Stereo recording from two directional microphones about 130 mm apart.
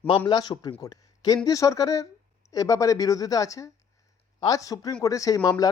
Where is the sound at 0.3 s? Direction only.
35° left (ahead or behind).